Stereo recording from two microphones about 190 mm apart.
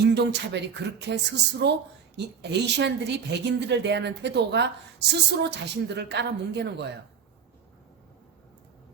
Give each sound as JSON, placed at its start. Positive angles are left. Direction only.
{"t": 0.0, "sound": "a woman's voice", "side_deg": -65}